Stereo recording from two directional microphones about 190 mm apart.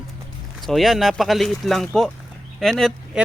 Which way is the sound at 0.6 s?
Centre (ahead or behind).